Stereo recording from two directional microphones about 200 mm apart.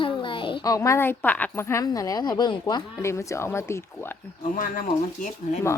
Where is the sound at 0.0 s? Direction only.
25° left (ahead or behind).